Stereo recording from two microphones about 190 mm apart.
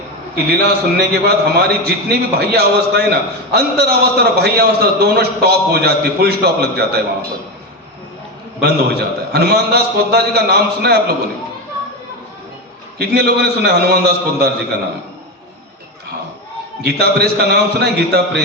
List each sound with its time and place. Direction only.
0.3 s a man's voice: 55° right (ahead or behind)
8.6 s a man's voice: 55° right (ahead or behind)
13.0 s a man's voice: 55° right (ahead or behind)
16.8 s a man's voice: 55° right (ahead or behind)